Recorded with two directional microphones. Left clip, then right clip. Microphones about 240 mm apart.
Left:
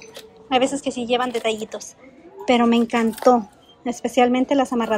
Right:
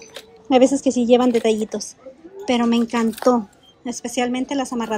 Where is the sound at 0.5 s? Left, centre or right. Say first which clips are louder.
Right 5 dB; right.